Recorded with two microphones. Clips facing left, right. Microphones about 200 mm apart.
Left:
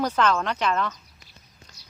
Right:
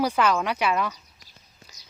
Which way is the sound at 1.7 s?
5° right (ahead or behind).